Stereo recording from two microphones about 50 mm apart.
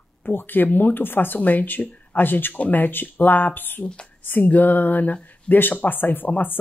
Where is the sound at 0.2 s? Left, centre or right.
Left.